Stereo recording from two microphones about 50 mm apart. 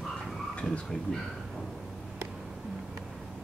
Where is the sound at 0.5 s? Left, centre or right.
Left.